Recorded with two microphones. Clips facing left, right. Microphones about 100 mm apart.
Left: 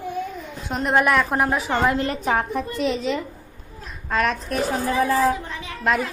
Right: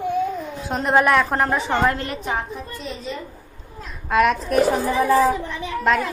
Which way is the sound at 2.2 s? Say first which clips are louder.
Left 3 dB; 60° left (ahead or behind).